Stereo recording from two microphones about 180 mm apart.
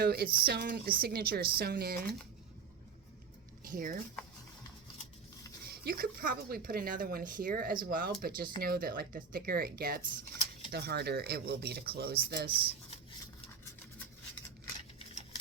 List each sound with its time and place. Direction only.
0.0 s speech: 60° right (ahead or behind)
3.6 s speech: 50° right (ahead or behind)
5.6 s speech: 60° right (ahead or behind)